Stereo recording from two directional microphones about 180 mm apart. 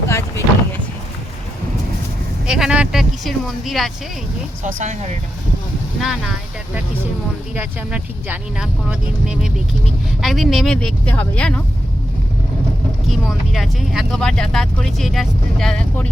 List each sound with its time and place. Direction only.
0.1 s boat: 15° left (ahead or behind)
2.5 s speech: 5° right (ahead or behind)
4.6 s speech: 40° right (ahead or behind)
6.0 s speech: 5° right (ahead or behind)
7.5 s speech: 10° right (ahead or behind)
13.1 s speech: centre (ahead or behind)